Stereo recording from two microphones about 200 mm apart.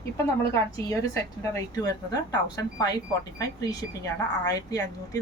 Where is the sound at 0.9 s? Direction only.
15° left (ahead or behind).